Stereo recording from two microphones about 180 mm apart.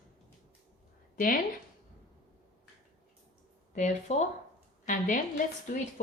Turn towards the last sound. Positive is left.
turn(degrees=50)  # may be behind; listen again after turning